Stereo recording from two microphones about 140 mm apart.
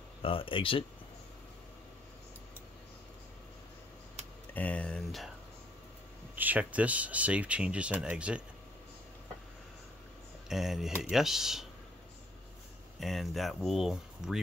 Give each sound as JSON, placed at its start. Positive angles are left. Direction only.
{"t": 0.2, "sound": "speech", "side_deg": 40}
{"t": 4.6, "sound": "speech", "side_deg": 10}
{"t": 6.3, "sound": "speech", "side_deg": -10}
{"t": 10.5, "sound": "speech", "side_deg": 0}
{"t": 13.0, "sound": "speech", "side_deg": 0}